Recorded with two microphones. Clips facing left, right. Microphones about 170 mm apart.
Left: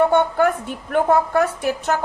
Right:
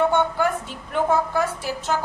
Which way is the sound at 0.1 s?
60° left (ahead or behind).